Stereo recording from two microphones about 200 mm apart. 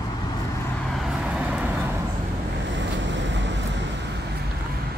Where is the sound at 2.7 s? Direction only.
65° right (ahead or behind).